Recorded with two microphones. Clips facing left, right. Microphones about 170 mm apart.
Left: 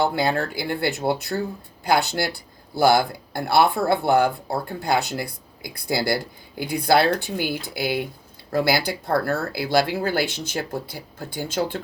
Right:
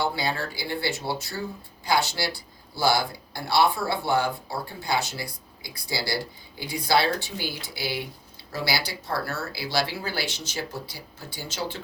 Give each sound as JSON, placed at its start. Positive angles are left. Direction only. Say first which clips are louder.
{"t": 0.2, "sound": "speech", "louder": "left 7 dB", "side_deg": 55}